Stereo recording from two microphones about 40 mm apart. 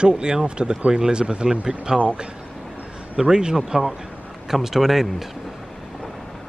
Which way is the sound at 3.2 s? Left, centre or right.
Centre.